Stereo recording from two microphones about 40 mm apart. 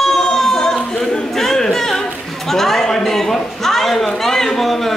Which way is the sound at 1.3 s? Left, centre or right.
Centre.